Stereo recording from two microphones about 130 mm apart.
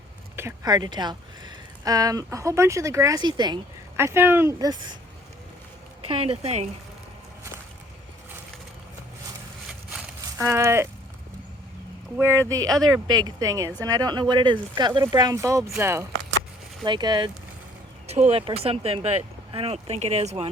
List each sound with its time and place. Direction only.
0.6 s speech: 30° right (ahead or behind)
3.9 s speech: 20° right (ahead or behind)
4.6 s speech: 35° right (ahead or behind)
6.0 s speech: 50° right (ahead or behind)
10.3 s speech: 20° right (ahead or behind)
12.2 s speech: 25° right (ahead or behind)
16.8 s speech: 35° right (ahead or behind)
18.0 s speech: 55° right (ahead or behind)